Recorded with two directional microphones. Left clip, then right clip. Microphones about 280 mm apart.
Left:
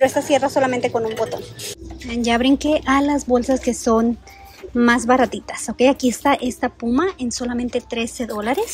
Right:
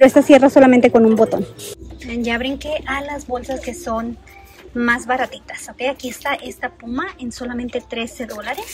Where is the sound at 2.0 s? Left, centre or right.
Centre.